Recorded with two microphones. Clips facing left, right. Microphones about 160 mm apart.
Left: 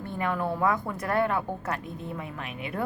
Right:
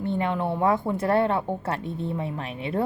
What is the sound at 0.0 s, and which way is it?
A woman's voice, 25° right (ahead or behind).